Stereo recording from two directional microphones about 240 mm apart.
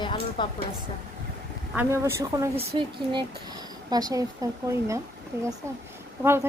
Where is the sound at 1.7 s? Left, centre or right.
Centre.